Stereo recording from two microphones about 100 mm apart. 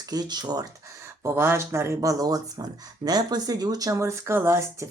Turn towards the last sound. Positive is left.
turn(degrees=-25)  # may be behind; listen again after turning